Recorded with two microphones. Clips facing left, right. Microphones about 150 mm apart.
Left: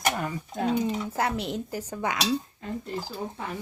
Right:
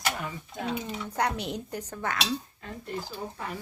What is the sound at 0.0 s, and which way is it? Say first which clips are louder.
Speech: left 5 dB; 45° left (ahead or behind).